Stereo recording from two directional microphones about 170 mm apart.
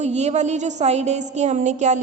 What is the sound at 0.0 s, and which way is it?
A man's voice, 40° right (ahead or behind).